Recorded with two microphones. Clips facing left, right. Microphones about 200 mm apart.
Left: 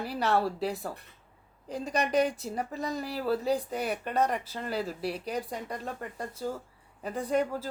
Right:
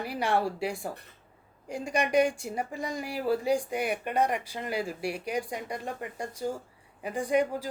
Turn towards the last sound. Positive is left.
turn(degrees=-15)  # may be behind; listen again after turning